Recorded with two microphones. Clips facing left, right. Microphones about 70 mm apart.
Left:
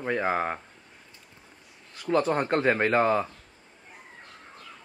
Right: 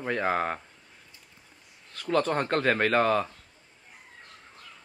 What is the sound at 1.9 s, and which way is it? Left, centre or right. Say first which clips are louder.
Speech: left 1 dB; centre.